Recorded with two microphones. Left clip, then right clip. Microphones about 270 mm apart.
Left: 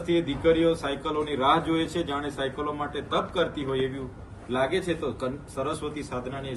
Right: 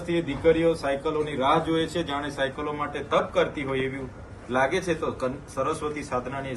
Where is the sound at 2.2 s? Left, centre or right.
Centre.